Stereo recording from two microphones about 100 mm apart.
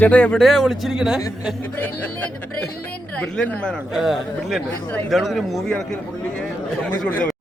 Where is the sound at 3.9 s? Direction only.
5° right (ahead or behind).